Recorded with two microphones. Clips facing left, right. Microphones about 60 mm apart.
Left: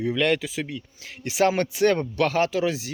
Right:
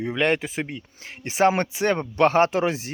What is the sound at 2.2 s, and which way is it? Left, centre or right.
Speech, right.